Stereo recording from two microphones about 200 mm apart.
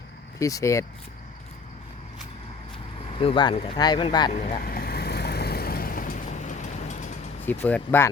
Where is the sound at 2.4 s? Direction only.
25° left (ahead or behind).